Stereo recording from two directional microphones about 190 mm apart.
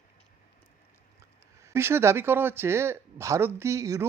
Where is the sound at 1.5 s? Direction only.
15° right (ahead or behind).